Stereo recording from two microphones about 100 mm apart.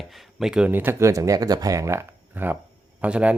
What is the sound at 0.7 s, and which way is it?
Speech, 20° right (ahead or behind).